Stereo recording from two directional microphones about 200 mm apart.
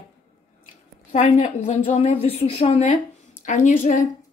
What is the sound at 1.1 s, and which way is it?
Speech, 35° left (ahead or behind).